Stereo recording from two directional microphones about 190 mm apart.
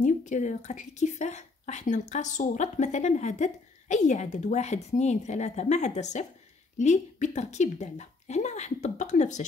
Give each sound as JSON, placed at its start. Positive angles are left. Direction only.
{"t": 0.0, "sound": "a woman's voice", "side_deg": 40}